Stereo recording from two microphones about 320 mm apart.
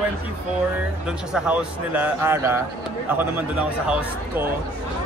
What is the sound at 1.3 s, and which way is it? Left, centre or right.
Speech, centre.